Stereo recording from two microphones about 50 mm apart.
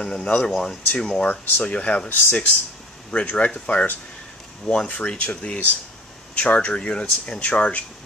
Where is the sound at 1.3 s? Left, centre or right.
Left.